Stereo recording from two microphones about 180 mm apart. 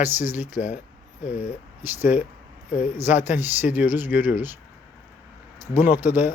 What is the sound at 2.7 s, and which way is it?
Speech, 45° left (ahead or behind).